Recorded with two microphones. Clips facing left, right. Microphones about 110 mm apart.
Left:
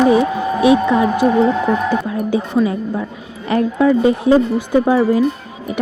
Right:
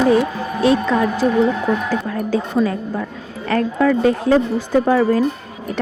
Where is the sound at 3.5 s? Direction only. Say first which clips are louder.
Left 2 dB; 15° left (ahead or behind).